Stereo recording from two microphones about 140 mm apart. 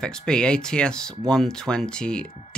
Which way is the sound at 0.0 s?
5° left (ahead or behind).